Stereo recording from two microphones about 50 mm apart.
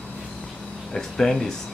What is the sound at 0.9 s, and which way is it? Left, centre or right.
Speech, centre.